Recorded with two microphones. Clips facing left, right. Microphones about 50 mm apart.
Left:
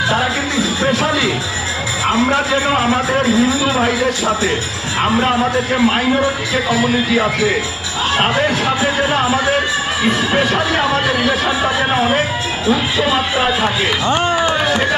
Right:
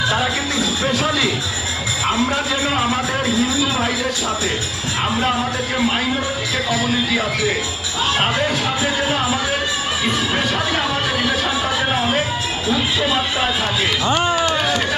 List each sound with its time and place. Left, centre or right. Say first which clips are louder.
0.1 s a man's voice: left 3 dB; centre
8.2 s a man's voice: left 6 dB; left
14.4 s run: left 3 dB; left